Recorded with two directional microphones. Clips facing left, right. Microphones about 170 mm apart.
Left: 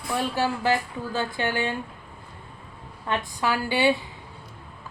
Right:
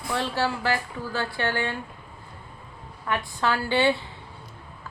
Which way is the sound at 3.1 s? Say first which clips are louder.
Left 1 dB; 25° left (ahead or behind).